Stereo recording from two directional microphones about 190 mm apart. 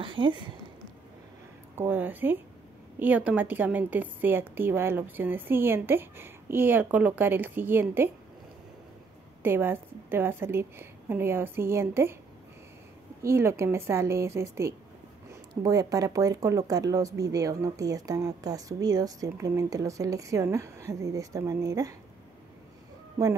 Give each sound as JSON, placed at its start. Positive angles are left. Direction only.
{"t": 0.0, "sound": "speech", "side_deg": -25}
{"t": 1.8, "sound": "a woman's voice", "side_deg": -10}
{"t": 9.4, "sound": "a woman's voice", "side_deg": -10}
{"t": 13.2, "sound": "a woman's voice", "side_deg": -15}